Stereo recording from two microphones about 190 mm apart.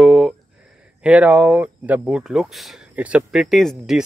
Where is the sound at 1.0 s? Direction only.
5° right (ahead or behind).